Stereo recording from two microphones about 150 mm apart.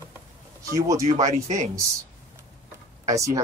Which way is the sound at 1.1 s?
50° right (ahead or behind).